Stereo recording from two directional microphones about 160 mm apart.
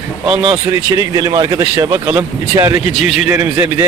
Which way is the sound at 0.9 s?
20° right (ahead or behind).